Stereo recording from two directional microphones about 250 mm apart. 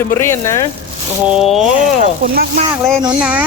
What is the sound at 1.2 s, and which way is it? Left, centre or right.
Speech, centre.